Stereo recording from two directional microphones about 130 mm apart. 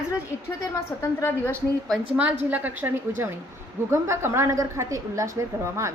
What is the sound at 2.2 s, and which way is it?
A woman's voice, 10° right (ahead or behind).